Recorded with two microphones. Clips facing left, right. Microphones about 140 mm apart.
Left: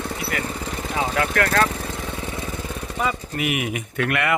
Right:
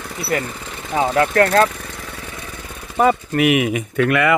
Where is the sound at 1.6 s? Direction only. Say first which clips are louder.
Left 3 dB; 30° left (ahead or behind).